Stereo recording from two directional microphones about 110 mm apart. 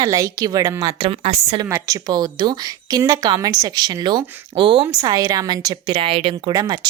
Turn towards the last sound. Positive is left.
turn(degrees=-35)  # may be behind; listen again after turning